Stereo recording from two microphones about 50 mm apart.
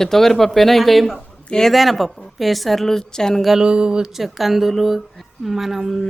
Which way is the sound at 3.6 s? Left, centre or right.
Centre.